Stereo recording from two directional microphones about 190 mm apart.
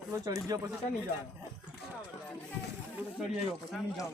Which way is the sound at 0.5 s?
20° right (ahead or behind).